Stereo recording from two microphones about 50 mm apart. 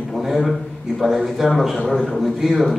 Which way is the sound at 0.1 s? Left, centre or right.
Centre.